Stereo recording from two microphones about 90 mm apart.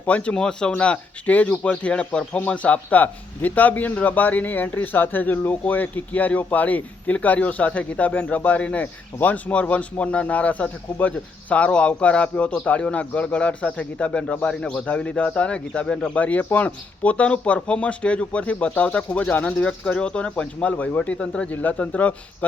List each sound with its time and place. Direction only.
0.0 s speech: 15° left (ahead or behind)